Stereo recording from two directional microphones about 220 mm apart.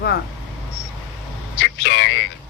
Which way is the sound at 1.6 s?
55° left (ahead or behind).